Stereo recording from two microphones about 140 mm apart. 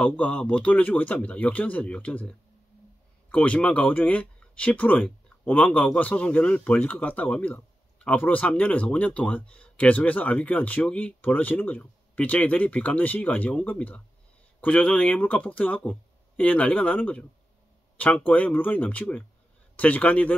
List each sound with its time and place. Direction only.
0.0 s speech: 10° left (ahead or behind)